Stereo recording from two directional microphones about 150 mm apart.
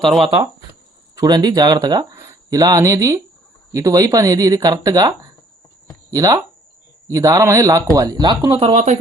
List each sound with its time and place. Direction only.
0.1 s speech: 30° right (ahead or behind)
8.5 s speech: 45° right (ahead or behind)